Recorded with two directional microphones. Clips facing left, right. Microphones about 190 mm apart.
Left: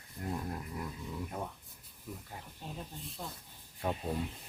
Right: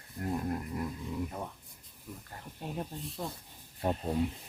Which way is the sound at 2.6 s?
60° right (ahead or behind).